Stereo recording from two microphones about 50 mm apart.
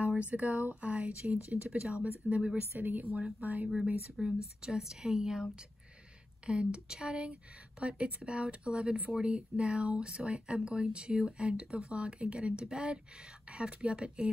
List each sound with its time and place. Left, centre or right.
0.2 s speech: right
2.7 s speech: right
4.2 s speech: centre